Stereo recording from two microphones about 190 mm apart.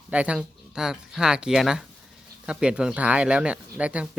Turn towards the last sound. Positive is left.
turn(degrees=-5)  # may be behind; listen again after turning